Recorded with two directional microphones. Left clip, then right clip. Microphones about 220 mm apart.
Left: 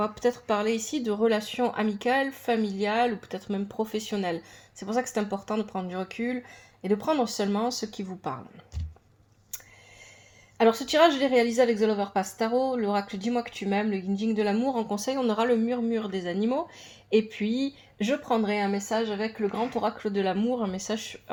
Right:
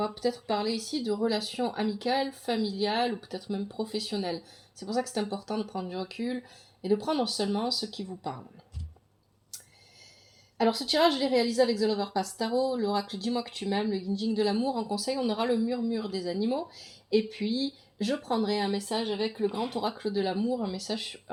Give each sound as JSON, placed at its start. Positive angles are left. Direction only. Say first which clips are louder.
{"t": 0.0, "sound": "speech", "louder": "left 3 dB", "side_deg": 15}
{"t": 0.8, "sound": "speech", "louder": "left 3 dB", "side_deg": 25}
{"t": 10.8, "sound": "speech", "louder": "left 3 dB", "side_deg": 25}